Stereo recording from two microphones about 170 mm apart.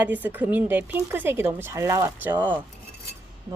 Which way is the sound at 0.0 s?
10° right (ahead or behind).